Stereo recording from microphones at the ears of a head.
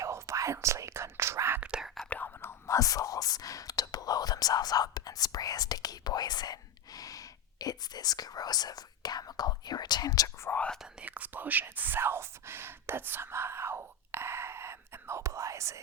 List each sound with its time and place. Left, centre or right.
0.0 s whispering: right
2.4 s whispering: left
11.2 s whispering: right